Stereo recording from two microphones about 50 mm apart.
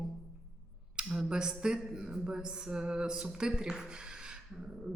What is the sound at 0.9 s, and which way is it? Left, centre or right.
Speech, centre.